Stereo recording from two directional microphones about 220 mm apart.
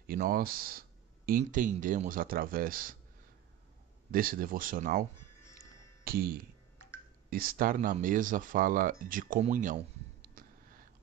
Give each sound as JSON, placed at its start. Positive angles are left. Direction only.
{"t": 0.0, "sound": "speech", "side_deg": -40}
{"t": 4.1, "sound": "speech", "side_deg": -40}
{"t": 6.0, "sound": "speech", "side_deg": -40}
{"t": 10.2, "sound": "a sound", "side_deg": -40}